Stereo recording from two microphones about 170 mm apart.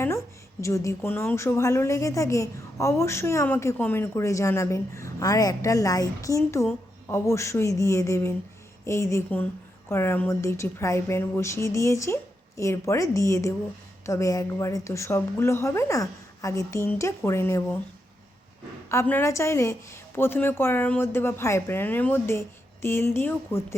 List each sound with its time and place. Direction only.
0.6 s a woman's voice: 20° left (ahead or behind)
18.9 s a woman's voice: 15° left (ahead or behind)